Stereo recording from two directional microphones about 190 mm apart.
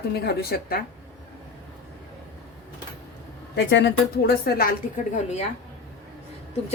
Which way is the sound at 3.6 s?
65° left (ahead or behind).